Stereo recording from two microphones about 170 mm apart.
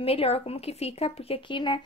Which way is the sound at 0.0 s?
35° left (ahead or behind).